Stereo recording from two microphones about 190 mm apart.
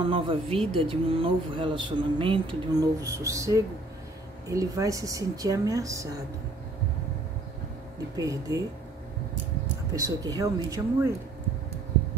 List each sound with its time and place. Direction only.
0.1 s a woman's voice: 30° right (ahead or behind)
8.2 s a woman's voice: 15° right (ahead or behind)
9.9 s a woman's voice: 20° right (ahead or behind)